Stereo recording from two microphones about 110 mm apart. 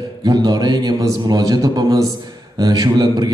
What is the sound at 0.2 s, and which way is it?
A man's voice, 35° right (ahead or behind).